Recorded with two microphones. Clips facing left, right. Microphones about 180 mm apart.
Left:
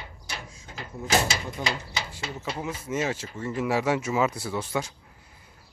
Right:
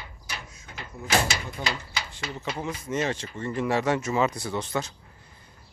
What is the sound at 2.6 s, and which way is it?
Speech, 5° left (ahead or behind).